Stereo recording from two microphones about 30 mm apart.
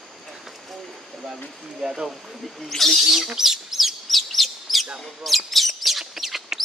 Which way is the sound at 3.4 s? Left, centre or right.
Centre.